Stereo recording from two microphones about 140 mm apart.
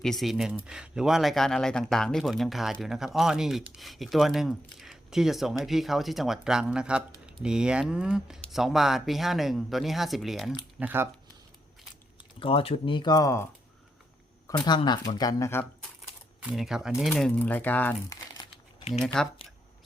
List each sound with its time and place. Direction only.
0.0 s speech: centre (ahead or behind)
10.8 s speech: 15° right (ahead or behind)
12.4 s speech: 40° left (ahead or behind); by 13.5 s 20° left (ahead or behind)
14.6 s speech: 30° left (ahead or behind)
16.4 s speech: 5° right (ahead or behind); by 17.9 s 10° left (ahead or behind)
18.1 s crumpling: 35° left (ahead or behind)
18.9 s speech: 5° left (ahead or behind)